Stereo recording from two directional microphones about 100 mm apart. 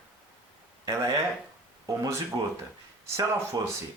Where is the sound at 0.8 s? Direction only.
35° right (ahead or behind).